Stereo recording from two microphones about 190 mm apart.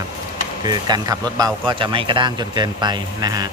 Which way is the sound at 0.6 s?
20° right (ahead or behind).